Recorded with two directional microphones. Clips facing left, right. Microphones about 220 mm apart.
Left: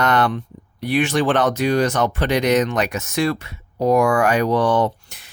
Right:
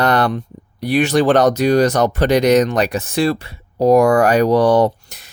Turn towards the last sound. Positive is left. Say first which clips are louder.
# right 5 dB
turn(degrees=-40)  # may be behind; listen again after turning